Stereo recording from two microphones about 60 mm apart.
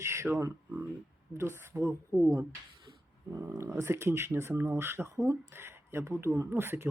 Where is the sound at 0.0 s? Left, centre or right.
Right.